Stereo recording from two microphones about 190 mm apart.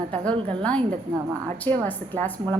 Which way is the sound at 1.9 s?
10° left (ahead or behind).